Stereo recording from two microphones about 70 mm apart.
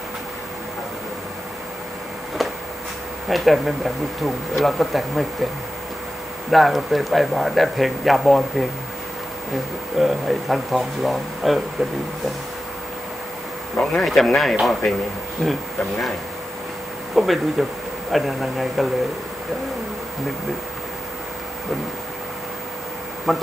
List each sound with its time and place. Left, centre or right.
3.3 s speech: centre
6.5 s speech: centre
9.9 s speech: centre
13.7 s speech: centre
17.1 s speech: centre
23.3 s speech: centre